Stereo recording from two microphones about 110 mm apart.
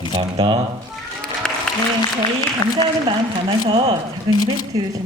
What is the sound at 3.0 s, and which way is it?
Speech, 45° right (ahead or behind).